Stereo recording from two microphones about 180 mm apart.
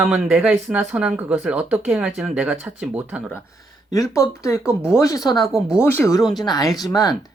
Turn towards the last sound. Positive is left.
turn(degrees=20)  # may be behind; listen again after turning